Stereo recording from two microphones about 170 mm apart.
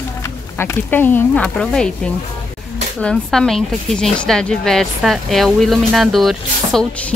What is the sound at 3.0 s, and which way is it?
Speech, 5° left (ahead or behind).